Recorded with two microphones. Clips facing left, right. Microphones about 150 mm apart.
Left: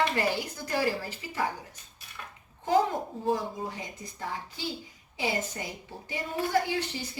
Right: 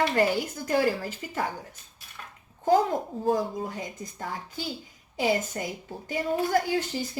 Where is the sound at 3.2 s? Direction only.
45° right (ahead or behind).